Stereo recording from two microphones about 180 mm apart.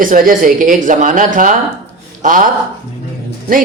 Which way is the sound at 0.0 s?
50° right (ahead or behind).